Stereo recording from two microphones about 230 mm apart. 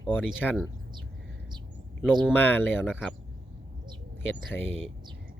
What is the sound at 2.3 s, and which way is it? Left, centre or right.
Speech, centre.